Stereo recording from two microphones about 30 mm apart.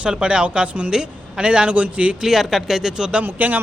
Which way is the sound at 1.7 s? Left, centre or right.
Right.